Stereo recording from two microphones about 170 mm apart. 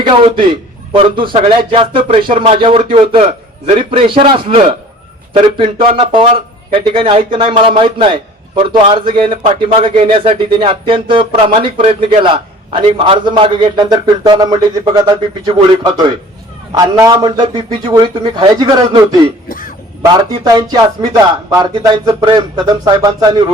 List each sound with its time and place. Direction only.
0.0 s a man's voice: 30° right (ahead or behind)
19.5 s a sound: 60° left (ahead or behind)
20.0 s speech: 25° right (ahead or behind)